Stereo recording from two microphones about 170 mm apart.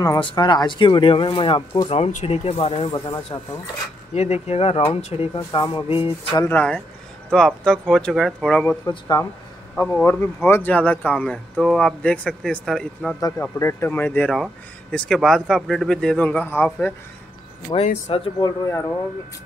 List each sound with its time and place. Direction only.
0.0 s speech: 20° left (ahead or behind)
1.9 s speech: 40° left (ahead or behind)
4.1 s speech: 40° left (ahead or behind)
6.3 s speech: 10° left (ahead or behind)
8.8 s speech: 20° left (ahead or behind); by 13.1 s centre (ahead or behind)
13.4 s speech: 15° left (ahead or behind)
17.8 s speech: 40° left (ahead or behind)
18.7 s speech: 15° left (ahead or behind)